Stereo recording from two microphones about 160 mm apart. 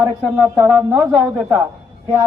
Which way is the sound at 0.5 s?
15° right (ahead or behind).